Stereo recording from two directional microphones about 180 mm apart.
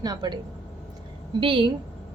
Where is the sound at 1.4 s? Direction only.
30° right (ahead or behind).